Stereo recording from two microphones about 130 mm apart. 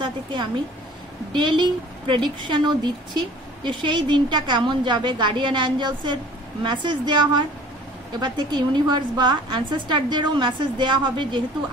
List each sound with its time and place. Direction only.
0.0 s a woman's voice: 40° right (ahead or behind)